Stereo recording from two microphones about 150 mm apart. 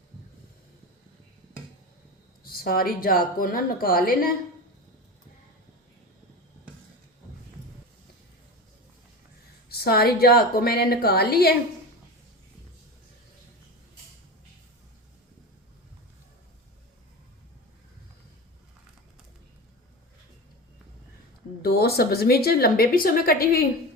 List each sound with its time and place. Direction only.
2.4 s a woman's voice: 80° left
9.6 s speech: 90° left
21.6 s speech: 90° left